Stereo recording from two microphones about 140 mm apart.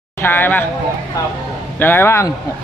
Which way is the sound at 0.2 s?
15° left (ahead or behind).